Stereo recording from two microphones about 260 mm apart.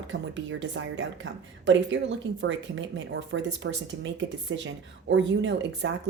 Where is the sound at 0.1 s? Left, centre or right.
Right.